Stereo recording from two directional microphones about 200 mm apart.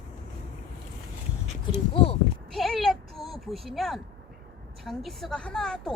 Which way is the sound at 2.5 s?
Centre (ahead or behind).